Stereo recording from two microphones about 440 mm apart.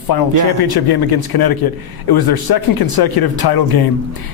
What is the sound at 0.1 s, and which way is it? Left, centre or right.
A man's voice, left.